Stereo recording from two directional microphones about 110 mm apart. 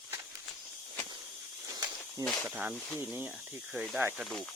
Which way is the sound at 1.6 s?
30° right (ahead or behind).